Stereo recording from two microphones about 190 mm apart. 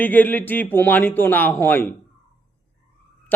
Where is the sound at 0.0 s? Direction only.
10° left (ahead or behind).